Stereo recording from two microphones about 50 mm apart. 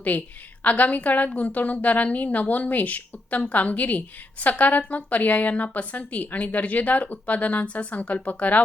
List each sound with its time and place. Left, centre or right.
0.1 s a woman's voice: left